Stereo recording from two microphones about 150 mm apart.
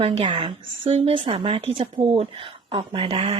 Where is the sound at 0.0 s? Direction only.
35° right (ahead or behind).